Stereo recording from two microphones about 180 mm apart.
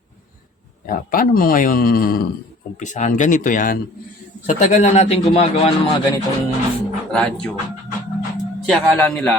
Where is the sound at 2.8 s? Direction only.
45° left (ahead or behind).